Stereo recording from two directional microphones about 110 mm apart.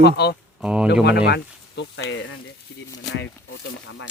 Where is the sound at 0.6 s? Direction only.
10° right (ahead or behind).